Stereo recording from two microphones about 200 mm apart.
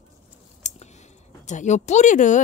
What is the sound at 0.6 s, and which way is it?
Scissors, 35° left (ahead or behind).